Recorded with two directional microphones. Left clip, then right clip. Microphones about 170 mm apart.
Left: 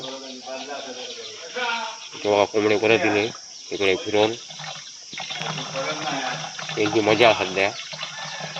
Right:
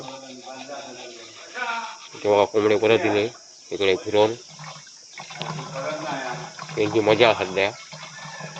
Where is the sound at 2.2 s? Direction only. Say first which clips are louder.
Right 1 dB; 15° right (ahead or behind).